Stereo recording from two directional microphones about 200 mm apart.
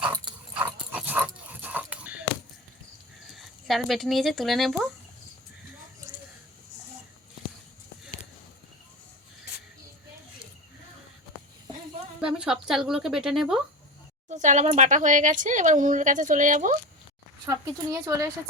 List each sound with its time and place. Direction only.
0.5 s dog: 5° right (ahead or behind)
3.3 s speech: centre (ahead or behind)
6.1 s a sound: 15° right (ahead or behind)
12.2 s speech: 5° right (ahead or behind)
14.3 s speech: 35° right (ahead or behind)
17.4 s speech: 15° right (ahead or behind)